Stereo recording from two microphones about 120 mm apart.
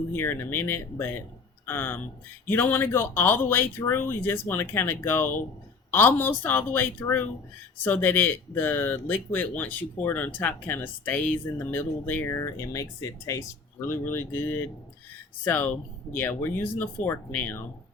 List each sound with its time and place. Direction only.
0.1 s speech: 20° left (ahead or behind)
13.8 s speech: 20° left (ahead or behind)